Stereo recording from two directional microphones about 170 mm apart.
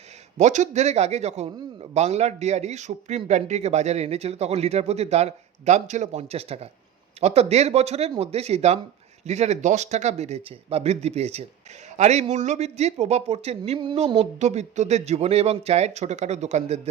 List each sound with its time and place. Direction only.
0.3 s speech: 45° right (ahead or behind)